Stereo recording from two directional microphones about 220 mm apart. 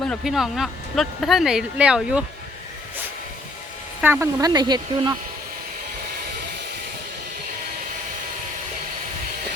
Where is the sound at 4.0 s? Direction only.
10° right (ahead or behind).